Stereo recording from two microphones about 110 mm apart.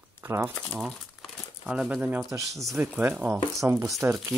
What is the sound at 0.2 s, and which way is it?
Speech, 25° right (ahead or behind).